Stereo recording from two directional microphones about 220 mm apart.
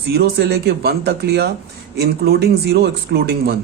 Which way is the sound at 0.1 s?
50° right (ahead or behind).